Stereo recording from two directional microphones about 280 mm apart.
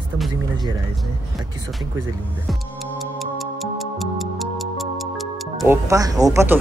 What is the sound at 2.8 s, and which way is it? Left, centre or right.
Music, centre.